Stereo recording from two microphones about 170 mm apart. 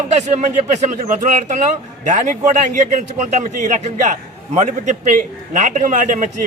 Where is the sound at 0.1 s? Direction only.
45° right (ahead or behind).